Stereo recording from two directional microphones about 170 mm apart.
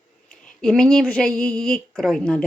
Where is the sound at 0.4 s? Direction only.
5° left (ahead or behind).